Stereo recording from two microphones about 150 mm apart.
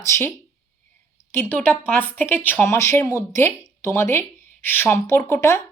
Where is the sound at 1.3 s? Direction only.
15° left (ahead or behind).